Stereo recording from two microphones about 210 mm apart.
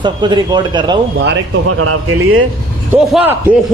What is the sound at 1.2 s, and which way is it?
Speech, 60° right (ahead or behind).